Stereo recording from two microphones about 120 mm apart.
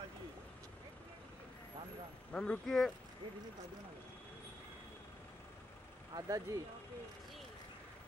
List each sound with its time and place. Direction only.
2.3 s speech: 10° left (ahead or behind)
6.1 s speech: 30° right (ahead or behind)